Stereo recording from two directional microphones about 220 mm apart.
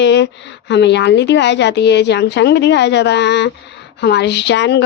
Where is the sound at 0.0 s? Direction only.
55° left (ahead or behind).